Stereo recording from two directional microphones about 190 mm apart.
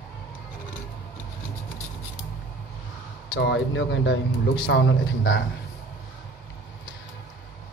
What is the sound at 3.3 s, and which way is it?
Speech, 65° left (ahead or behind).